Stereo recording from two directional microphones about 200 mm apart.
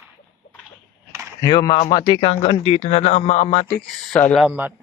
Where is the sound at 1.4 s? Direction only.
20° left (ahead or behind).